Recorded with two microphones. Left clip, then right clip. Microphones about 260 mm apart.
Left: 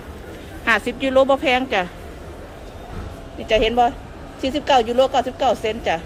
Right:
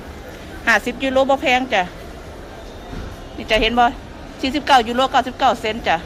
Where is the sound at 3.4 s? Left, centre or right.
Centre.